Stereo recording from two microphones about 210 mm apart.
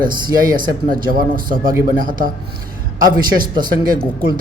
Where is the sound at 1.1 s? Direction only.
40° right (ahead or behind).